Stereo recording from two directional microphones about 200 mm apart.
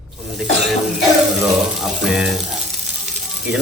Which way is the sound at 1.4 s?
Centre (ahead or behind).